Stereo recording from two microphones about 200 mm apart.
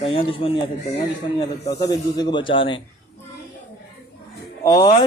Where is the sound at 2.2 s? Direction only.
25° left (ahead or behind).